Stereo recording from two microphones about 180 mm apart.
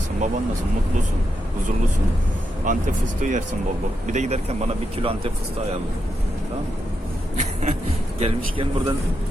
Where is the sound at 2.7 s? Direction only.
45° right (ahead or behind).